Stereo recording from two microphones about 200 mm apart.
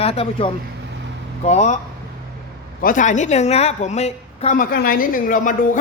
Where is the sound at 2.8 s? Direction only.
40° left (ahead or behind).